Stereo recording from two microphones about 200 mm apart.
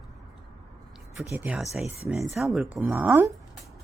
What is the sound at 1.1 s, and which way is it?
Speech, 5° right (ahead or behind).